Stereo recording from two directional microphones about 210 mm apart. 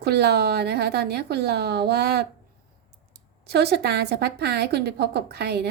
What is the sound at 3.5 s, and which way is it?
A woman's voice, 50° right (ahead or behind).